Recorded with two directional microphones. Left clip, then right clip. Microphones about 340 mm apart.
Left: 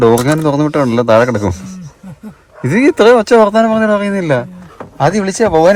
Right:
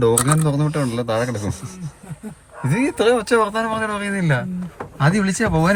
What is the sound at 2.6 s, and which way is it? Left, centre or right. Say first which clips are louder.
Speech: left 10 dB; left.